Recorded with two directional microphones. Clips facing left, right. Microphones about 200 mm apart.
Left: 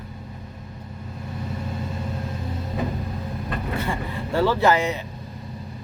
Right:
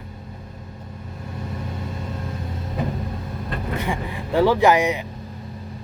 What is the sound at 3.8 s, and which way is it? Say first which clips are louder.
Speech: right 1 dB; 15° right (ahead or behind).